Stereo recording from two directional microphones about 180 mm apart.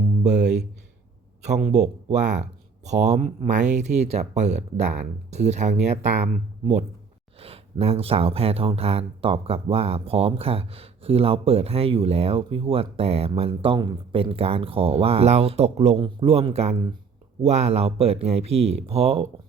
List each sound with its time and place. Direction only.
0.2 s speech: 40° right (ahead or behind)
1.5 s speech: 40° right (ahead or behind)